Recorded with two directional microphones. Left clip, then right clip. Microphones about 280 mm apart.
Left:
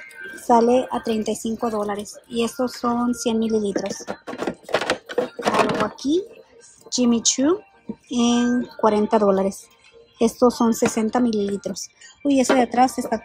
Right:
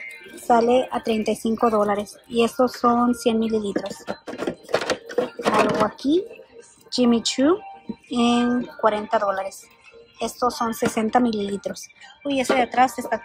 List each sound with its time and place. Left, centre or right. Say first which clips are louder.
0.5 s a woman's voice: left 1 dB; centre
3.7 s a sound: left 1 dB; centre
6.9 s a woman's voice: even; centre
9.1 s speech: left 4 dB; left
10.8 s a woman's voice: even; centre